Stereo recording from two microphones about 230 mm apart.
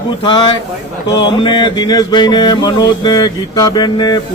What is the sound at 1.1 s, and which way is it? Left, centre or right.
Mantra, centre.